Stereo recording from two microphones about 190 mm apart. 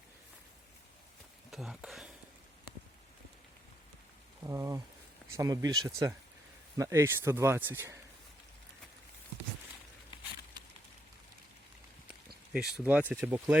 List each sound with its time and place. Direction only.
1.5 s a sound: centre (ahead or behind)
4.4 s speech: 15° right (ahead or behind)
12.5 s speech: 5° right (ahead or behind)